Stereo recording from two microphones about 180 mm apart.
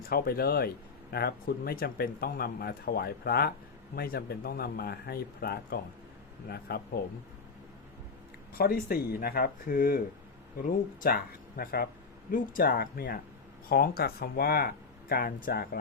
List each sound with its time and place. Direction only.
0.1 s speech: 55° left (ahead or behind)
8.5 s speech: 55° left (ahead or behind)